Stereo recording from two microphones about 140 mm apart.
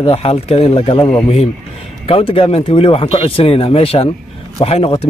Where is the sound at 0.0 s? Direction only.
45° left (ahead or behind).